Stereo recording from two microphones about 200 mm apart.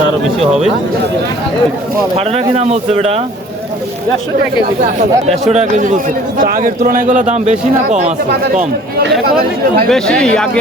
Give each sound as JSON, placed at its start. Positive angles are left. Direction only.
{"t": 2.1, "sound": "a man's voice", "side_deg": -30}
{"t": 4.9, "sound": "a man's voice", "side_deg": -35}
{"t": 9.2, "sound": "speech", "side_deg": -50}
{"t": 9.9, "sound": "speech", "side_deg": 5}